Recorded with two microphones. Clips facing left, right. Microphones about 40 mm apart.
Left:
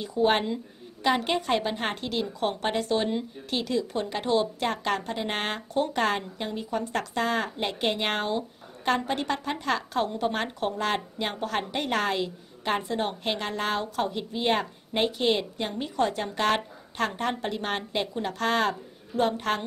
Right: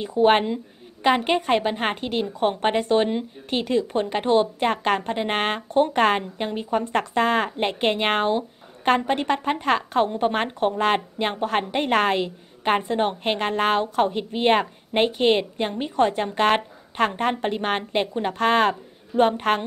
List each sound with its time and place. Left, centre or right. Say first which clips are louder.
0.0 s a woman's voice: right 6 dB; right